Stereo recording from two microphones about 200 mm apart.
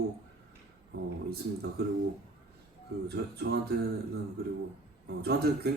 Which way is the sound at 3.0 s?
55° right (ahead or behind).